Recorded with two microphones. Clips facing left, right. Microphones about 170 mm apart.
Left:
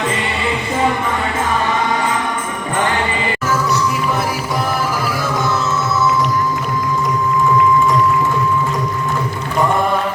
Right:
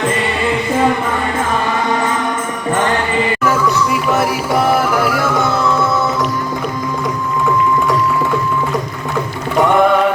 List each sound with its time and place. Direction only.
4.1 s music: 60° right (ahead or behind)
9.6 s music: 70° right (ahead or behind)